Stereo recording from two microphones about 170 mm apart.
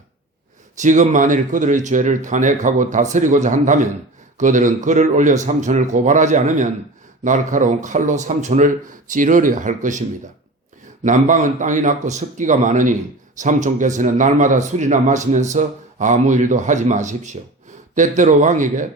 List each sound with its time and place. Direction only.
0.8 s a man's voice: 45° right (ahead or behind)
11.0 s a man's voice: 50° right (ahead or behind)